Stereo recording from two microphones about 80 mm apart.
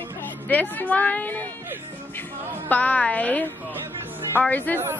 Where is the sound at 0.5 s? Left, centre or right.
Left.